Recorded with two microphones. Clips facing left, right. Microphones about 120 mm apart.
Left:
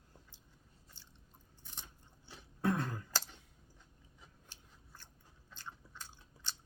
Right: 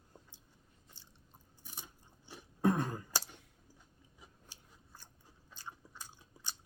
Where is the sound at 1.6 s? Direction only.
10° right (ahead or behind).